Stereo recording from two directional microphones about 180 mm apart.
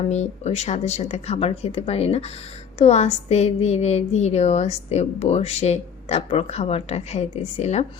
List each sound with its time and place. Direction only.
0.0 s a woman's voice: 40° left (ahead or behind)